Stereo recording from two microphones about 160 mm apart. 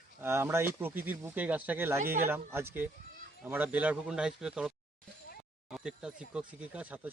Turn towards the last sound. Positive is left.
turn(degrees=-10)  # may be behind; listen again after turning